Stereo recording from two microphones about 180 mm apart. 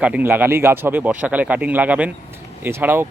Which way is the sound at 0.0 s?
10° right (ahead or behind).